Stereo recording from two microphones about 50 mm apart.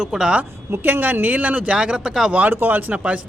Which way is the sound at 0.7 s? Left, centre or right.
Right.